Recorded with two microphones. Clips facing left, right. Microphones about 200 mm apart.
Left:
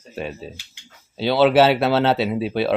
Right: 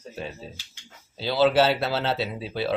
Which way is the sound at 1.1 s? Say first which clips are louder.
Left 5 dB; 65° left (ahead or behind).